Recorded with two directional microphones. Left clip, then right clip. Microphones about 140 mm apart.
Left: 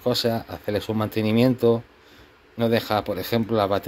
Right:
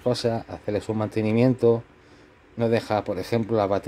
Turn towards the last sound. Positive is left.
turn(degrees=-25)  # may be behind; listen again after turning